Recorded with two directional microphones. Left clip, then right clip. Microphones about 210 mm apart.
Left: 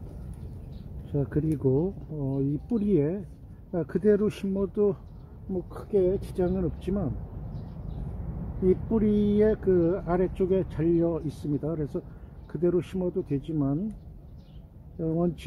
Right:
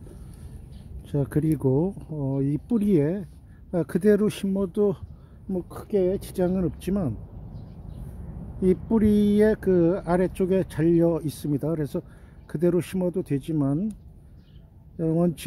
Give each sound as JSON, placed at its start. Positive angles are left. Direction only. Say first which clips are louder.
{"t": 1.0, "sound": "speech", "louder": "right 3 dB", "side_deg": -40}
{"t": 8.6, "sound": "speech", "louder": "right 2 dB", "side_deg": -40}
{"t": 15.0, "sound": "speech", "louder": "right 4 dB", "side_deg": -40}